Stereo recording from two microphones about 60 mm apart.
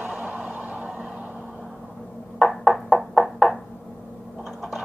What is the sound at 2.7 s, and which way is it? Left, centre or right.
Knock, centre.